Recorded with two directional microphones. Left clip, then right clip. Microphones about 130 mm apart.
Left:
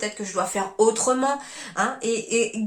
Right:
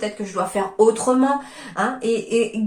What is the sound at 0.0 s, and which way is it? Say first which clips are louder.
Speech: right 2 dB; 25° left (ahead or behind).